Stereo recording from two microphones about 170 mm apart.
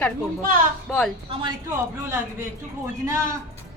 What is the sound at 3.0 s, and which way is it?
Speech, 20° right (ahead or behind).